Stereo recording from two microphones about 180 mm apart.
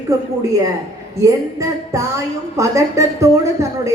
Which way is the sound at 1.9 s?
15° right (ahead or behind).